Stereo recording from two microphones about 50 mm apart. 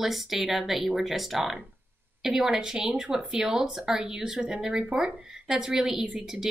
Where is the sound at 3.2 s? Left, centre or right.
Centre.